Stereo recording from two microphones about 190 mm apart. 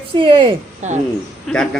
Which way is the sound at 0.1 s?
25° right (ahead or behind).